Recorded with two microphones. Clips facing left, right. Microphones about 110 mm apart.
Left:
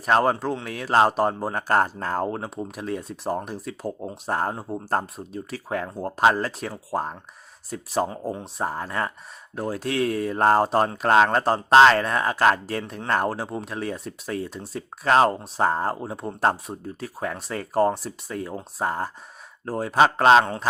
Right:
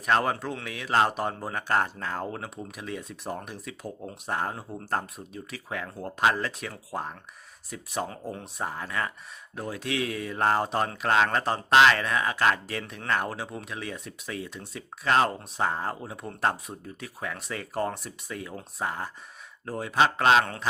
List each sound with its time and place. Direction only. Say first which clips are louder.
0.0 s speech: left 5 dB; 35° left (ahead or behind)